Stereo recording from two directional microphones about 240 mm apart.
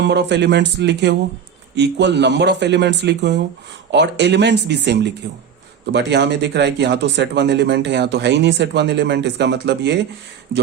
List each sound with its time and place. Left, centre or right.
0.0 s speech: right